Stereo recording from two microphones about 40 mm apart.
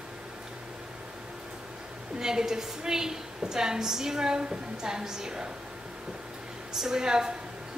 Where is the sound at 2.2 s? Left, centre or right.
Centre.